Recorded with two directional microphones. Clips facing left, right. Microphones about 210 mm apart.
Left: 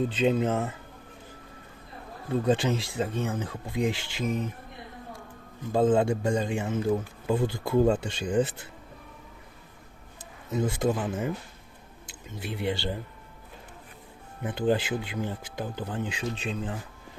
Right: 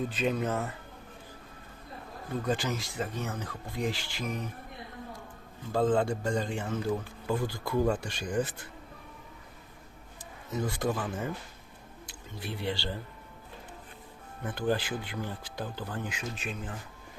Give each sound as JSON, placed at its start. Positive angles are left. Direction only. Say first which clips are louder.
{"t": 0.1, "sound": "a man's voice", "louder": "left 5 dB", "side_deg": 25}
{"t": 2.5, "sound": "a man's voice", "louder": "left 6 dB", "side_deg": 25}
{"t": 5.7, "sound": "a man's voice", "louder": "left 4 dB", "side_deg": 20}
{"t": 10.5, "sound": "a man's voice", "louder": "left 4 dB", "side_deg": 20}
{"t": 12.3, "sound": "a man's voice", "louder": "left 4 dB", "side_deg": 20}
{"t": 14.4, "sound": "a man's voice", "louder": "left 4 dB", "side_deg": 20}
{"t": 16.0, "sound": "a man's voice", "louder": "left 5 dB", "side_deg": 30}